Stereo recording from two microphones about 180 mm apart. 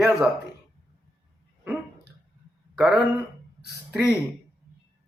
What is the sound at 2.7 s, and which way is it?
Speech, centre (ahead or behind).